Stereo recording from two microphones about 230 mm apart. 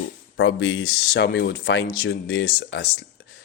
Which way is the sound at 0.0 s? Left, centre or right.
Left.